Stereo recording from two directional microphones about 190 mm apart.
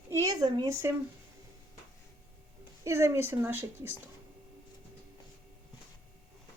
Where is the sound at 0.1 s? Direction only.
15° right (ahead or behind).